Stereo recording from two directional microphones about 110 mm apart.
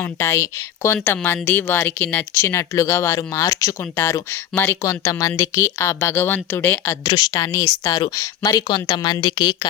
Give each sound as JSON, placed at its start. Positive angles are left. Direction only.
{"t": 0.0, "sound": "speech", "side_deg": 20}
{"t": 7.0, "sound": "a woman's voice", "side_deg": 40}